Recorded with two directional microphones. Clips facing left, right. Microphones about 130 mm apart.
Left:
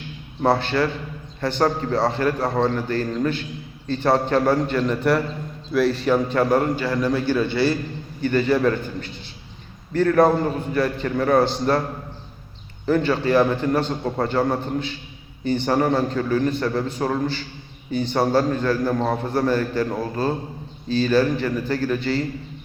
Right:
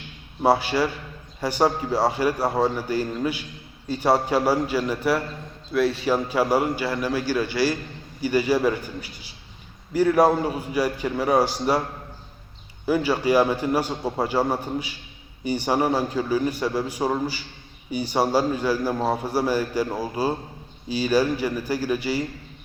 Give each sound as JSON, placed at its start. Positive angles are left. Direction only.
{"t": 0.4, "sound": "a man's voice", "side_deg": -10}
{"t": 12.8, "sound": "a man's voice", "side_deg": -10}